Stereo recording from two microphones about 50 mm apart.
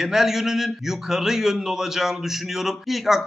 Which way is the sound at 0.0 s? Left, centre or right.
Centre.